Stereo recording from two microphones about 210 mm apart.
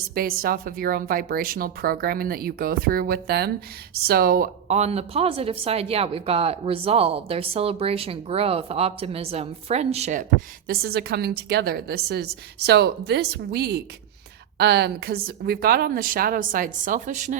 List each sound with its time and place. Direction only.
0.1 s speech: 45° right (ahead or behind)
10.7 s speech: 50° right (ahead or behind)